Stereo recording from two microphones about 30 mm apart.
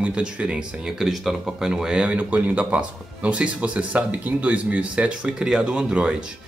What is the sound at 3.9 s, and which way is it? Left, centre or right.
Speech, right.